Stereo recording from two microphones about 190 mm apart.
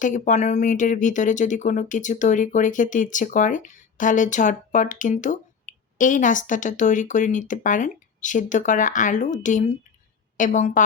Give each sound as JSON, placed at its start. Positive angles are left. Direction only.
{"t": 0.0, "sound": "speech", "side_deg": 40}